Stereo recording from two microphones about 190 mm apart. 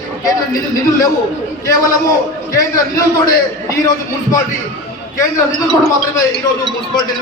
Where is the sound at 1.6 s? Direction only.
20° left (ahead or behind).